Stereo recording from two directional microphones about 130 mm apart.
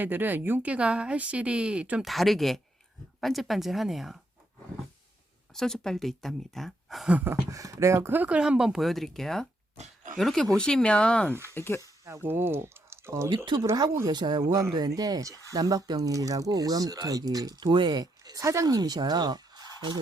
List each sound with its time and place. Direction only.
0.0 s speech: 15° right (ahead or behind)
5.5 s speech: 5° left (ahead or behind)
7.5 s speech: 25° right (ahead or behind); by 9.5 s 5° left (ahead or behind)
9.7 s pig: 65° right (ahead or behind)
10.2 s speech: 5° left (ahead or behind)
11.3 s speech: 20° right (ahead or behind)
11.5 s speech: 20° left (ahead or behind)
11.8 s speech: 20° right (ahead or behind)